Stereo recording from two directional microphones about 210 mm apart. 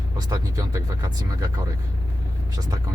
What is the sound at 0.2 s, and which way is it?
Speech, 15° right (ahead or behind).